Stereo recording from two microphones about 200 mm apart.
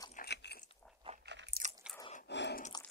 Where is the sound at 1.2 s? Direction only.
60° right (ahead or behind).